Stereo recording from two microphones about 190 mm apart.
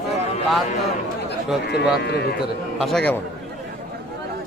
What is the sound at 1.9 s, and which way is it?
Speech, 60° left (ahead or behind).